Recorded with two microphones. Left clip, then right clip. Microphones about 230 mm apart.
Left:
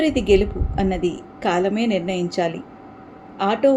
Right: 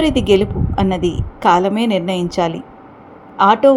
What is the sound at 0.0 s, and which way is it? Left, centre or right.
Speech, right.